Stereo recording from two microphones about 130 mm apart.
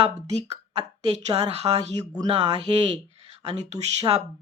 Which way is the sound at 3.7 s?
60° right (ahead or behind).